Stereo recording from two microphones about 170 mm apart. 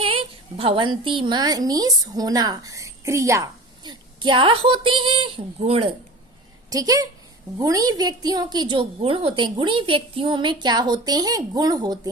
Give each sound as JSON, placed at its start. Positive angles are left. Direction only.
{"t": 0.0, "sound": "a woman's voice", "side_deg": -35}
{"t": 6.7, "sound": "a woman's voice", "side_deg": -20}